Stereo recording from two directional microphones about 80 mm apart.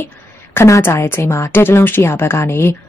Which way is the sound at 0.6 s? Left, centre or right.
Left.